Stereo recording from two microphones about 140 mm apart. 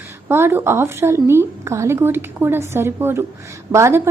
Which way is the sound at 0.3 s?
15° right (ahead or behind).